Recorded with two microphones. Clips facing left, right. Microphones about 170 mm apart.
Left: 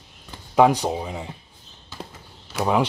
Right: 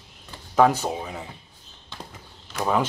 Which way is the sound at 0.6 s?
15° left (ahead or behind).